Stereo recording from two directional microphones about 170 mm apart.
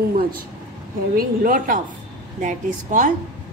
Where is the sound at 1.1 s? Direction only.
55° right (ahead or behind).